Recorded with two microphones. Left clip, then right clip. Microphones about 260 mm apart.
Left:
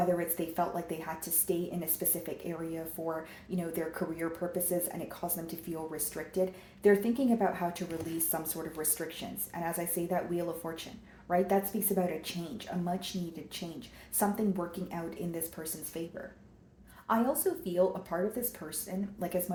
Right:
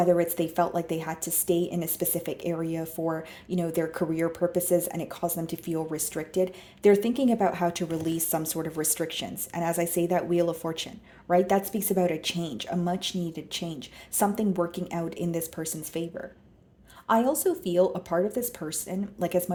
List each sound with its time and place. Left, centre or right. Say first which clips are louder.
0.2 s speech: right 8 dB; right
14.2 s speech: right 6 dB; right
17.1 s speech: right 6 dB; right